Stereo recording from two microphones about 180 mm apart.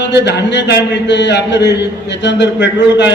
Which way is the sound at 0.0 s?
70° left (ahead or behind).